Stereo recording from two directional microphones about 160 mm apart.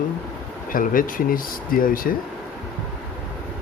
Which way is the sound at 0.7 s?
60° left (ahead or behind).